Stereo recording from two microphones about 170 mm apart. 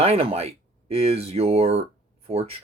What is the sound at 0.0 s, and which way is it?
Speech, 35° right (ahead or behind).